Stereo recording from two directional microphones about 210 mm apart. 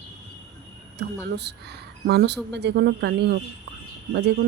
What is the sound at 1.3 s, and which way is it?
Speech, 55° right (ahead or behind).